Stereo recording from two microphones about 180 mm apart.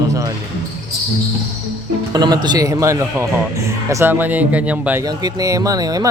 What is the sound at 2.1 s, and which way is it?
Speech, 25° right (ahead or behind).